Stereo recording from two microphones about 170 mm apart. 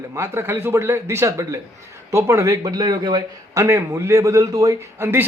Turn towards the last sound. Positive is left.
turn(degrees=-15)  # may be behind; listen again after turning